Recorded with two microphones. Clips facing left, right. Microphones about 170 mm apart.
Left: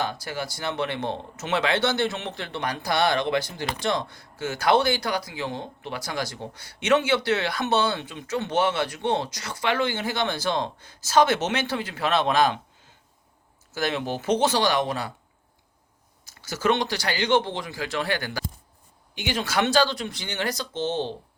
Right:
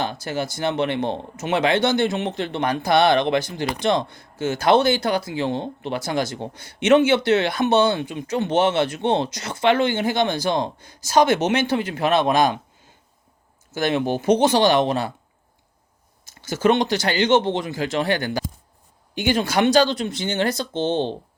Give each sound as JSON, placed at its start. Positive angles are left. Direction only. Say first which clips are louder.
{"t": 0.0, "sound": "speech", "louder": "right 4 dB", "side_deg": -25}
{"t": 13.7, "sound": "speech", "louder": "right 6 dB", "side_deg": -20}
{"t": 16.2, "sound": "speech", "louder": "right 5 dB", "side_deg": -20}
{"t": 19.1, "sound": "speech", "louder": "right 8 dB", "side_deg": -50}
{"t": 19.5, "sound": "speech", "louder": "right 3 dB", "side_deg": -15}